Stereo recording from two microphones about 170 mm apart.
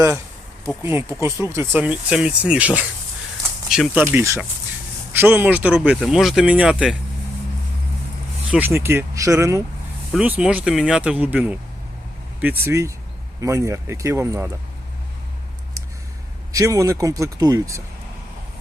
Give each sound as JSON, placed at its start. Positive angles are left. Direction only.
{"t": 0.8, "sound": "speech", "side_deg": -15}
{"t": 4.0, "sound": "speech", "side_deg": -15}
{"t": 8.4, "sound": "speech", "side_deg": -10}
{"t": 10.1, "sound": "speech", "side_deg": -5}
{"t": 16.5, "sound": "speech", "side_deg": -20}